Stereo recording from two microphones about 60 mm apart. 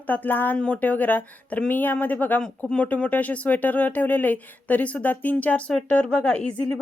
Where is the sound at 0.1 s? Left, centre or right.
Left.